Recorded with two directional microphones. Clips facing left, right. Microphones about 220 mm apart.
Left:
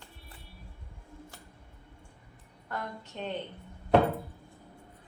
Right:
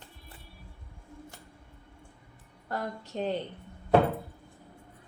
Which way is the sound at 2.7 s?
35° right (ahead or behind).